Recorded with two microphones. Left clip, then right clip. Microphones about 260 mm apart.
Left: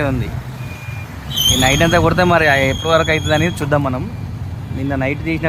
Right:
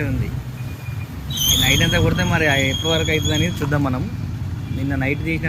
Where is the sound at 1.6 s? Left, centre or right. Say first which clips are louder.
Left 5 dB; centre.